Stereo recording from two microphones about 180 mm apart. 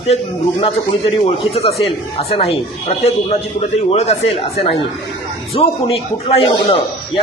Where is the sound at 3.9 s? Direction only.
35° left (ahead or behind).